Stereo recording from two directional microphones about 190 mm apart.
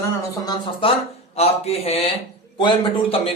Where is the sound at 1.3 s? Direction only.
35° left (ahead or behind).